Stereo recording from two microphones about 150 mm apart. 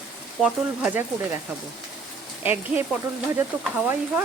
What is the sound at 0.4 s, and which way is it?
Speech, 10° right (ahead or behind).